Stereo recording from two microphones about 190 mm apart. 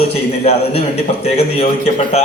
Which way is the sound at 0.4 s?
35° left (ahead or behind).